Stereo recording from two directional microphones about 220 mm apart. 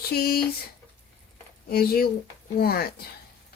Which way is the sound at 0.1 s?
45° left (ahead or behind).